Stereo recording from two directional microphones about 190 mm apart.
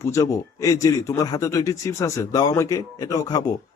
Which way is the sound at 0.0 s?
15° left (ahead or behind).